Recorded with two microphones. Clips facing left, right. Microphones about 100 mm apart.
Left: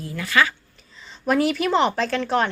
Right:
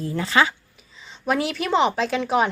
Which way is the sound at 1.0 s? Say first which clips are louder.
Left 3 dB; centre (ahead or behind).